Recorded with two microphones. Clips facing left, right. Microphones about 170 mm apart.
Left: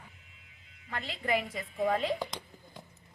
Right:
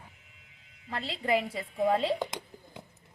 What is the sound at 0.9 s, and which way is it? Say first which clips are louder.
A woman's voice: right 3 dB; 30° right (ahead or behind).